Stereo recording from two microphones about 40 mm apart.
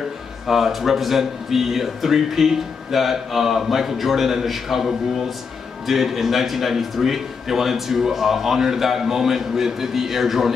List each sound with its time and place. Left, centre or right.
0.5 s a man's voice: centre